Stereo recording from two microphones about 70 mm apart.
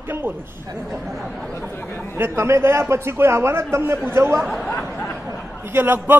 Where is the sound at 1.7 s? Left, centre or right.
Left.